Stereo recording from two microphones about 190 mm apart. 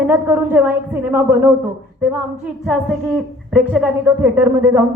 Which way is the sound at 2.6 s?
Centre (ahead or behind).